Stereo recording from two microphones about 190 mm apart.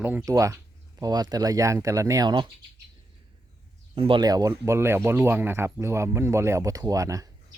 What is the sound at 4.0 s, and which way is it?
Speech, 25° right (ahead or behind).